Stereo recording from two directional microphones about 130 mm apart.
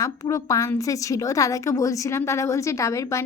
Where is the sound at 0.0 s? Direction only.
25° left (ahead or behind).